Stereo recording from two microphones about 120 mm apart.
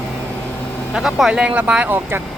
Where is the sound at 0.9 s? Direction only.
5° right (ahead or behind).